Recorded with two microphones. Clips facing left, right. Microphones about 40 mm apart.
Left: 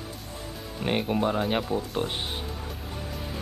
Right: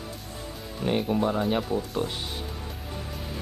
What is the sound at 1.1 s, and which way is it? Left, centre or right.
Speech, left.